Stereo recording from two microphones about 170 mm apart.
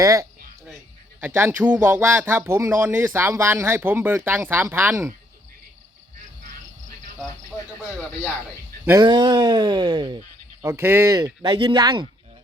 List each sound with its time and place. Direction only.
0.0 s speech: 20° right (ahead or behind)
8.9 s speech: 25° right (ahead or behind)
10.6 s speech: 15° right (ahead or behind)